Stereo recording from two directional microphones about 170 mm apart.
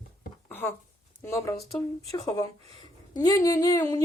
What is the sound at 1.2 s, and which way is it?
A woman's voice, 15° left (ahead or behind).